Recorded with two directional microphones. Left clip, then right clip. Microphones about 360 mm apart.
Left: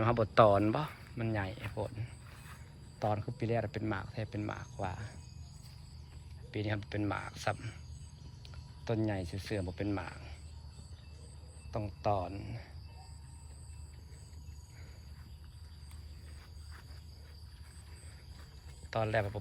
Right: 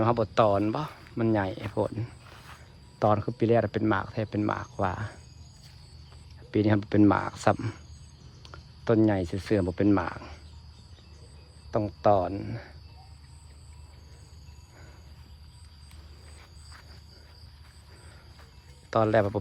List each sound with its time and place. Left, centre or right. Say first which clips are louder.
0.0 s speech: right 3 dB; centre
3.0 s speech: right 11 dB; centre
6.5 s speech: right 13 dB; centre
11.7 s speech: right 11 dB; centre
18.9 s speech: right 10 dB; centre